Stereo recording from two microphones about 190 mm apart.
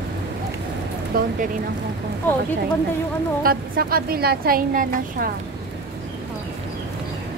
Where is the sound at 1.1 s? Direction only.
50° right (ahead or behind).